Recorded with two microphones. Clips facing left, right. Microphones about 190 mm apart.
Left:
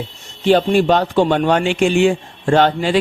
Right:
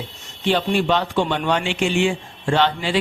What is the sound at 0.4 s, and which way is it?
Speech, 40° left (ahead or behind).